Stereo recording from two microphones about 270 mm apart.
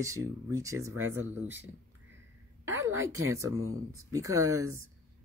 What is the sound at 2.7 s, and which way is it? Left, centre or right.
Speech, right.